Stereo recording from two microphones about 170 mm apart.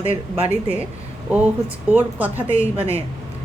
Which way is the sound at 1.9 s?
10° right (ahead or behind).